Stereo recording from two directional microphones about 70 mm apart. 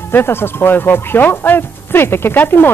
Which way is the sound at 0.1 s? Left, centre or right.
Left.